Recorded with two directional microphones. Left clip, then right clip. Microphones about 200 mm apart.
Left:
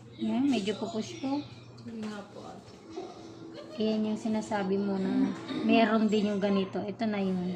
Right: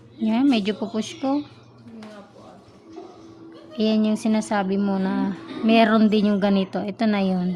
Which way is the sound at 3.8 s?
65° right (ahead or behind).